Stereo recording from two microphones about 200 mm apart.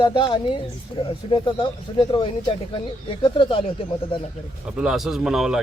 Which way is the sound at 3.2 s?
25° left (ahead or behind).